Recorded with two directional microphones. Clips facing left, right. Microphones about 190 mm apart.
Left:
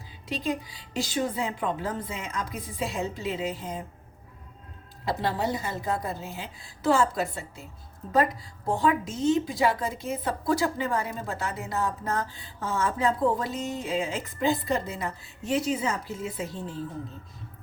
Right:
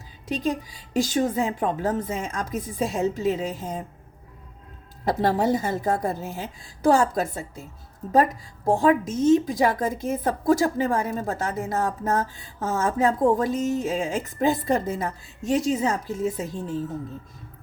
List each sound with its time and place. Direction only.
0.7 s a woman's voice: 45° right (ahead or behind)
5.0 s a woman's voice: 50° right (ahead or behind)
8.6 s a woman's voice: 45° right (ahead or behind)